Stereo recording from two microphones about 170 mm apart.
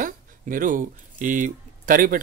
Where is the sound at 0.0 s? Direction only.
55° right (ahead or behind).